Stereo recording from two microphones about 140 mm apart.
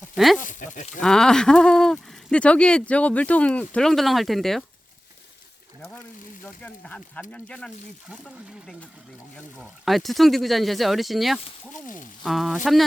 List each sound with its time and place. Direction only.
0.3 s speech: 65° left (ahead or behind)
1.0 s speech: 5° left (ahead or behind)
6.4 s speech: 10° left (ahead or behind)
11.7 s speech: 65° left (ahead or behind)
12.2 s speech: centre (ahead or behind)